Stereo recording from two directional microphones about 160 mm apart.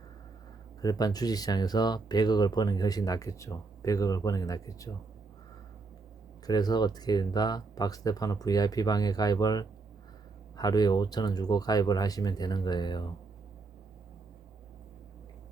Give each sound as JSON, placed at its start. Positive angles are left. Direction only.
{"t": 0.8, "sound": "speech", "side_deg": 25}
{"t": 6.4, "sound": "speech", "side_deg": 25}